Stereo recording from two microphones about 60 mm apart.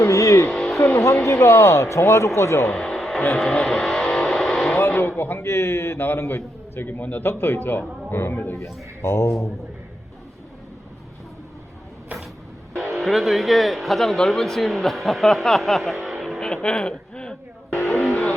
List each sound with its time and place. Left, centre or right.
0.0 s music: left
0.5 s music: centre
0.8 s speech: left
2.7 s a sound: centre
3.2 s speech: left
3.7 s music: centre
4.8 s a man's voice: left
12.7 s speech: centre
16.4 s speech: centre
17.9 s music: centre